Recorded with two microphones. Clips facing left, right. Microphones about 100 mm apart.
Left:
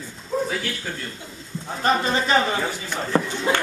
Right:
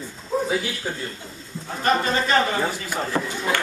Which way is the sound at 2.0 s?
15° left (ahead or behind).